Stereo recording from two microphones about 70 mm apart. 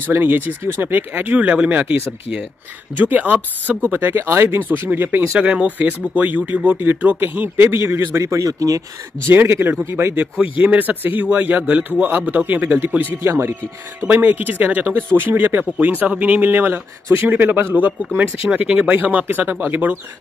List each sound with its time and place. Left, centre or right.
0.1 s speech: right
3.9 s speech: right
5.4 s speech: centre; by 8.2 s right
8.2 s speech: right
9.3 s speech: right
10.6 s speech: right
13.2 s speech: right
14.0 s speech: right
17.7 s speech: right